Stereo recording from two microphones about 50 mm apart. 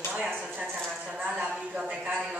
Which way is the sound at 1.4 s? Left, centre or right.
Centre.